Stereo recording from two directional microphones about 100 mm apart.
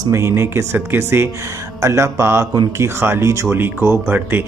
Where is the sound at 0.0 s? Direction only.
30° right (ahead or behind).